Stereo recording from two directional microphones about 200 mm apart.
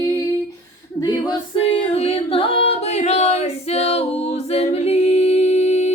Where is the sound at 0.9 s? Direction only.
20° left (ahead or behind).